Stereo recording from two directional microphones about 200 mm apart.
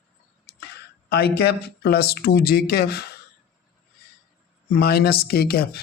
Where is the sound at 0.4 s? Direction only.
55° left (ahead or behind).